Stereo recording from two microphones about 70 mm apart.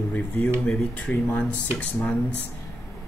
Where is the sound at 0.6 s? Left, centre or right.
Centre.